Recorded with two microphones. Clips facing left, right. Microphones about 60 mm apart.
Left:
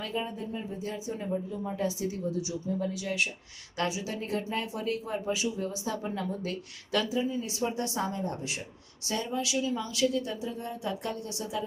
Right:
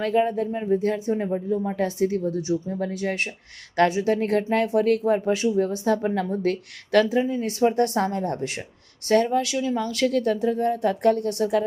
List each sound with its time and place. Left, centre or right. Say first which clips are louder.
0.0 s speech: right 12 dB; right